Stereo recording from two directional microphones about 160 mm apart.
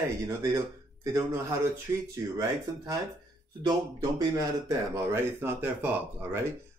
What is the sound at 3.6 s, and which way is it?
Speech, 20° right (ahead or behind).